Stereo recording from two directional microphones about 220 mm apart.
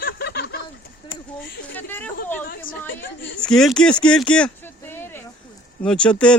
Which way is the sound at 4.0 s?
5° left (ahead or behind).